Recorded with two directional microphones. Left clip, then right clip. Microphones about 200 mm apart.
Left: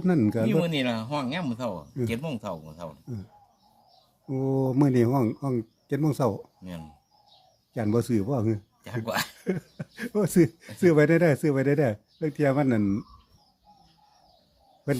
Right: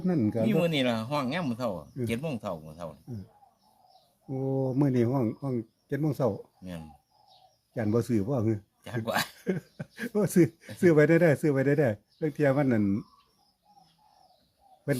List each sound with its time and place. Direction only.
0.0 s speech: 30° left (ahead or behind)
0.4 s speech: 5° right (ahead or behind)
4.3 s speech: 25° left (ahead or behind)
7.7 s speech: 15° left (ahead or behind)